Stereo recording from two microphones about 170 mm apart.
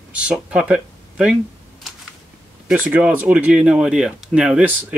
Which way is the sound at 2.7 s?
10° right (ahead or behind).